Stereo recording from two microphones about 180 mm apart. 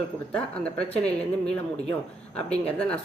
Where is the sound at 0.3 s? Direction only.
5° left (ahead or behind).